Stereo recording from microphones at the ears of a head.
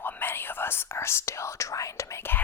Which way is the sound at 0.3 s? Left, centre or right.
Left.